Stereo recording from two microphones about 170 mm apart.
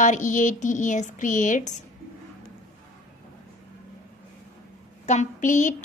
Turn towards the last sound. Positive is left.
turn(degrees=45)  # may be behind; listen again after turning